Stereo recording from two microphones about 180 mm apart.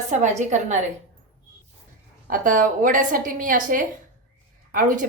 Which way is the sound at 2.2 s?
50° right (ahead or behind).